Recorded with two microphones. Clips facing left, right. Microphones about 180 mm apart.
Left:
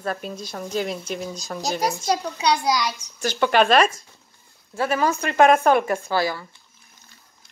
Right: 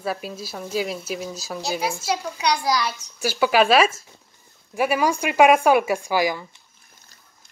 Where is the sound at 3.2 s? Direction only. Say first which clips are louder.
Even; 5° right (ahead or behind).